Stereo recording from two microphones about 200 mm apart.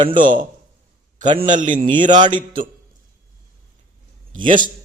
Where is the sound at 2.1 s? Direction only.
25° right (ahead or behind).